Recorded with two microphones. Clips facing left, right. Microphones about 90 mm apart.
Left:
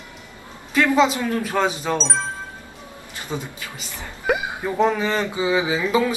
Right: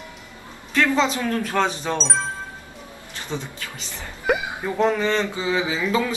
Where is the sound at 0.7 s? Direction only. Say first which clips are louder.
Left 3 dB; 15° left (ahead or behind).